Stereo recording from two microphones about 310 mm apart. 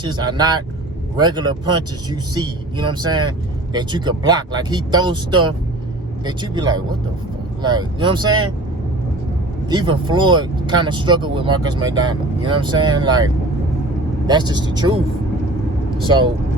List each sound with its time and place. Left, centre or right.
0.0 s speech: centre
9.6 s speech: centre